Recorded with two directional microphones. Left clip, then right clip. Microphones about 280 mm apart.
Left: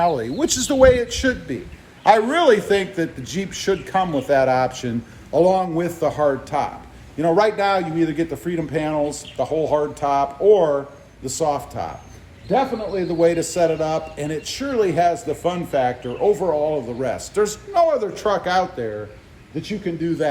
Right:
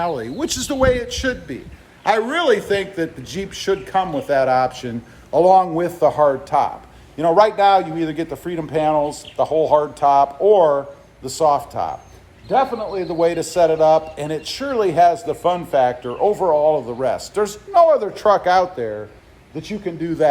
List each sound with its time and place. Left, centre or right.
0.0 s a man's voice: centre; by 20.2 s right